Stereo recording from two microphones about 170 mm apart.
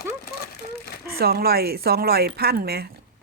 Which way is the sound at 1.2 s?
65° right (ahead or behind).